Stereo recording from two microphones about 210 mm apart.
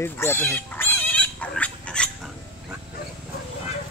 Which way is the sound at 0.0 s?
10° left (ahead or behind).